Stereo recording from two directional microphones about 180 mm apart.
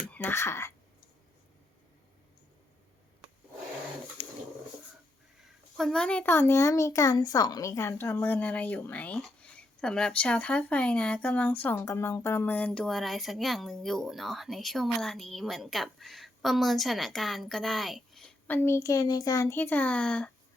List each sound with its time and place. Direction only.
0.1 s speech: 10° left (ahead or behind)
4.2 s dog: 35° left (ahead or behind)
5.7 s a child's voice: 5° left (ahead or behind)